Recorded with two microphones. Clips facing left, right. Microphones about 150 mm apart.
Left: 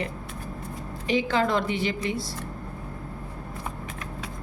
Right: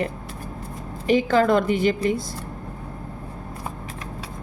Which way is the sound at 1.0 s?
45° right (ahead or behind).